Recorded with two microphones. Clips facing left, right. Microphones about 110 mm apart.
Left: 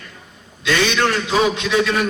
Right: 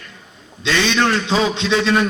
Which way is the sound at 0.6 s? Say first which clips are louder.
Even; 25° right (ahead or behind).